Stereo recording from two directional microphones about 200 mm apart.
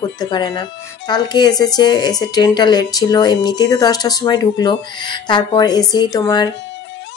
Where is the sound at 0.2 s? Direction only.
20° left (ahead or behind).